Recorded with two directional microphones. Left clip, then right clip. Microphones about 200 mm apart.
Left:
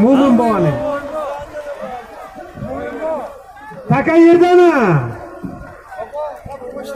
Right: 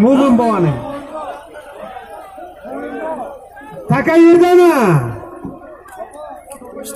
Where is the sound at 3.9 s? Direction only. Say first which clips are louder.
Right 1 dB; 45° right (ahead or behind).